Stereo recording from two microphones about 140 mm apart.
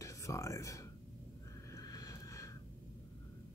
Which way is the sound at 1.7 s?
25° left (ahead or behind).